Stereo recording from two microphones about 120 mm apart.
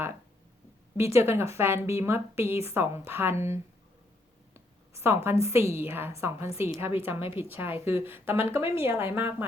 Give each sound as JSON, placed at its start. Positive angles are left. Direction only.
{"t": 0.9, "sound": "speech", "side_deg": -25}
{"t": 4.5, "sound": "a sound", "side_deg": -20}
{"t": 5.7, "sound": "speech", "side_deg": -20}